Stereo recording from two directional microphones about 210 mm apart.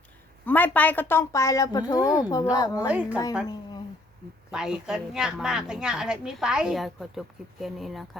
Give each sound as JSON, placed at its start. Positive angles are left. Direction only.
{"t": 0.4, "sound": "a woman's voice", "side_deg": 10}
{"t": 2.0, "sound": "a woman's voice", "side_deg": -5}
{"t": 2.3, "sound": "a woman's voice", "side_deg": 15}
{"t": 2.8, "sound": "a woman's voice", "side_deg": -5}
{"t": 4.5, "sound": "a woman's voice", "side_deg": -5}